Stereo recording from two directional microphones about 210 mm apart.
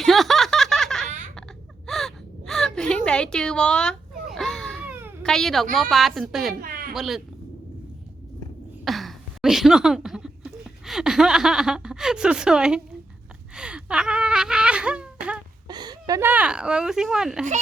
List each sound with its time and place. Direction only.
0.0 s snicker: centre (ahead or behind)
1.9 s gasp: centre (ahead or behind)
4.9 s baby cry: 10° right (ahead or behind)
5.2 s a woman's voice: centre (ahead or behind)
6.6 s a sound: 45° right (ahead or behind)
6.9 s a woman's voice: centre (ahead or behind)
8.8 s speech: centre (ahead or behind)
13.6 s wail: 5° right (ahead or behind)
15.6 s speech: 20° right (ahead or behind); by 17.4 s centre (ahead or behind)